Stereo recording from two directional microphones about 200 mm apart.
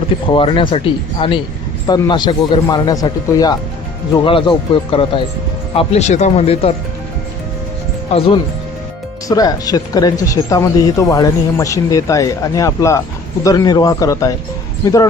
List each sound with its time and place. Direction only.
0.3 s speech: 25° left (ahead or behind)
9.3 s speech: 20° left (ahead or behind)